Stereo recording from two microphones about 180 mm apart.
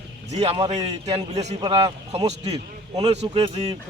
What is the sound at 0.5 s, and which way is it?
A man's voice, 25° right (ahead or behind).